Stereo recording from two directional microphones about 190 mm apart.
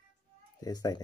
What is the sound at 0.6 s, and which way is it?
Speech, 20° left (ahead or behind).